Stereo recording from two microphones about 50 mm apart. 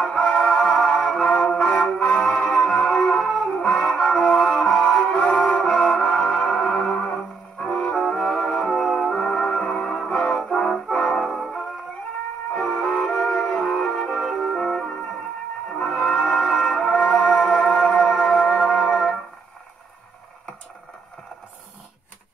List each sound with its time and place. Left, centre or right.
0.1 s music: left
3.3 s music: centre
7.1 s music: left
7.7 s brass instrument: centre
8.1 s music: centre
9.1 s music: centre
12.8 s music: centre
18.9 s music: centre